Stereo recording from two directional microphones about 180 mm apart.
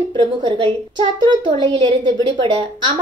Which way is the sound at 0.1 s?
25° right (ahead or behind).